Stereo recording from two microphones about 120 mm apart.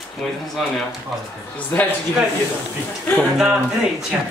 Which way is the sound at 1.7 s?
20° left (ahead or behind).